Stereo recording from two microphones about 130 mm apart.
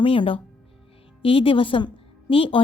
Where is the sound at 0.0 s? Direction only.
45° left (ahead or behind).